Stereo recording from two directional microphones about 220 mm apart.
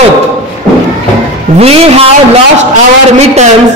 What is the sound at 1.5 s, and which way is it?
Speech, 30° right (ahead or behind).